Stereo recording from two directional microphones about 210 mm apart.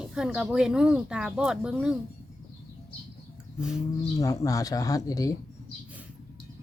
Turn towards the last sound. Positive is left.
turn(degrees=15)  # may be behind; listen again after turning